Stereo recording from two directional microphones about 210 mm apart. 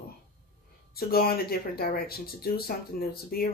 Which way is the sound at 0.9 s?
45° left (ahead or behind).